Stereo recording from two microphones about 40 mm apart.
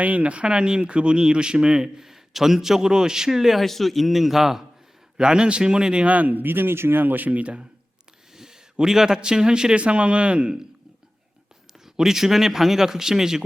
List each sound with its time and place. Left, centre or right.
0.0 s speech: right
1.7 s a man's voice: centre
3.6 s a man's voice: centre
5.1 s speech: right
6.1 s speech: right
7.0 s speech: right
8.8 s a man's voice: centre; by 10.6 s right
11.9 s a man's voice: centre